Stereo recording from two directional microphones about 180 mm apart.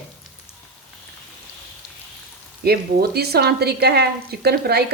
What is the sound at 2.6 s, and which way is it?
A woman's voice, 60° right (ahead or behind).